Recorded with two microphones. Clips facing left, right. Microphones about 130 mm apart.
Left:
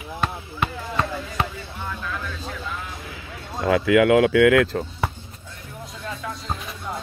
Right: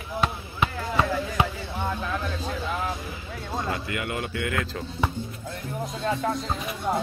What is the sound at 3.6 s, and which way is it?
Speech, 90° left.